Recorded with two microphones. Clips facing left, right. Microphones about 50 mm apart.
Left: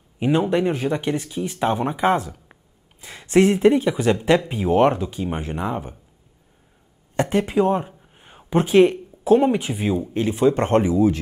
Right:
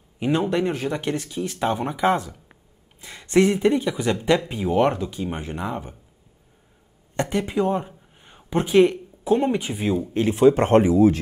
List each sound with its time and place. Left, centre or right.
0.2 s speech: centre
3.0 s speech: centre
7.2 s speech: centre
10.3 s speech: centre